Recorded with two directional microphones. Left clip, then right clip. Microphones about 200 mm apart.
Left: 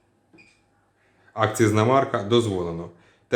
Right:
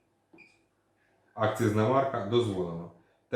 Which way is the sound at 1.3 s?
55° left (ahead or behind).